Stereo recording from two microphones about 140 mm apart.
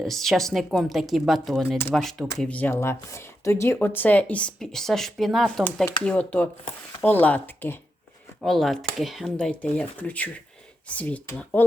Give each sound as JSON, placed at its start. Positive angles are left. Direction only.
{"t": 0.0, "sound": "a woman's voice", "side_deg": 0}
{"t": 8.4, "sound": "a woman's voice", "side_deg": 0}